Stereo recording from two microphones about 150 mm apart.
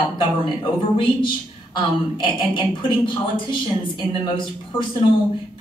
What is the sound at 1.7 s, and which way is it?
A woman's voice, 35° left (ahead or behind).